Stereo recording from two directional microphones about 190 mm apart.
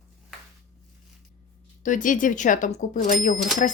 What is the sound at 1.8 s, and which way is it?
Speech, 45° left (ahead or behind).